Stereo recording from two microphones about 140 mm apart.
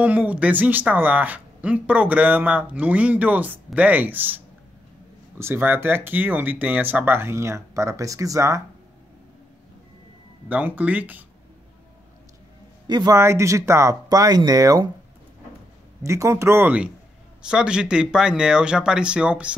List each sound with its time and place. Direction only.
0.0 s speech: 10° right (ahead or behind)
5.4 s speech: 15° right (ahead or behind)
10.5 s speech: 10° right (ahead or behind)
12.8 s speech: 30° right (ahead or behind)
16.0 s speech: 20° right (ahead or behind)